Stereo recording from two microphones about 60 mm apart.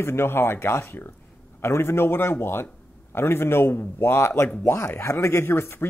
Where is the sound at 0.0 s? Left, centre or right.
Left.